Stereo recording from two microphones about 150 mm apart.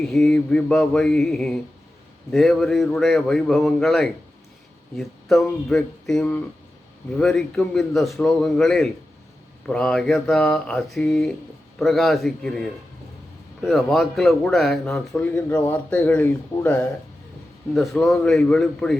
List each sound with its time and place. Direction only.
0.0 s speech: 5° left (ahead or behind)